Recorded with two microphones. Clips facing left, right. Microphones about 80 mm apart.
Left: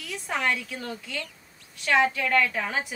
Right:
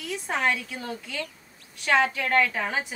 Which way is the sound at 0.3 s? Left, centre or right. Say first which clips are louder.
Right 1 dB; centre.